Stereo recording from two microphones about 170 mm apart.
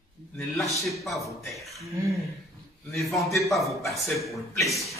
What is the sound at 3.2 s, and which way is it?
Speech, 15° left (ahead or behind).